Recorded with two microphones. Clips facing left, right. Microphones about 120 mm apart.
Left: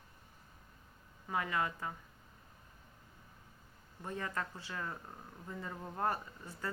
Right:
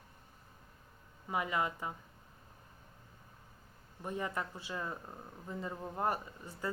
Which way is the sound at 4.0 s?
15° right (ahead or behind).